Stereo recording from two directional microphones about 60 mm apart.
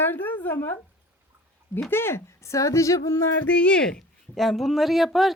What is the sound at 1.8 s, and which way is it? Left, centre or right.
Speech, left.